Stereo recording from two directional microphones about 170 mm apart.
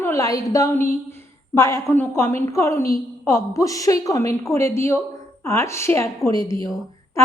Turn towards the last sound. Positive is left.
turn(degrees=20)  # may be behind; listen again after turning